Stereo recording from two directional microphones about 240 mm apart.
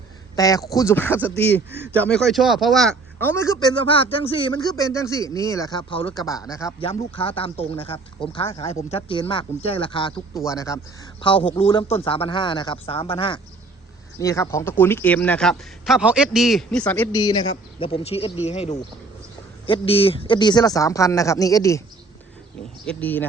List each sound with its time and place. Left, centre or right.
0.3 s a man's voice: centre
8.9 s a man's voice: left
22.9 s a man's voice: centre